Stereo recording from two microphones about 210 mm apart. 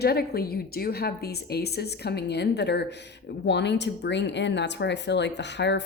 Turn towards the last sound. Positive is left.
turn(degrees=55)  # may be behind; listen again after turning